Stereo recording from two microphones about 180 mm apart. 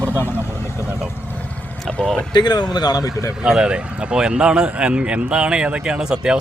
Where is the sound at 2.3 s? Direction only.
25° left (ahead or behind).